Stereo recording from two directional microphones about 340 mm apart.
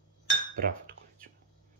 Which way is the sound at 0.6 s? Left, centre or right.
Right.